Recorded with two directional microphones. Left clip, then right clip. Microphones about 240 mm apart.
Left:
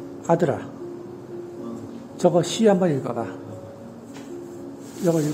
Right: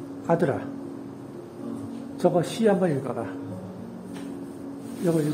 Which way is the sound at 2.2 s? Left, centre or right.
Left.